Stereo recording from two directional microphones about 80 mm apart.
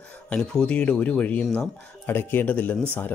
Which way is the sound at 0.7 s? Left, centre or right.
Centre.